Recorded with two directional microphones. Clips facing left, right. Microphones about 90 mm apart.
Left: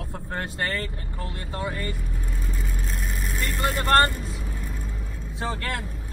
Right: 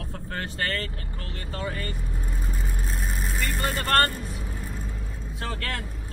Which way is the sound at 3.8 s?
20° left (ahead or behind).